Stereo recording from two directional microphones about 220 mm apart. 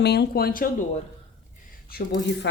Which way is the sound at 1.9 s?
45° left (ahead or behind).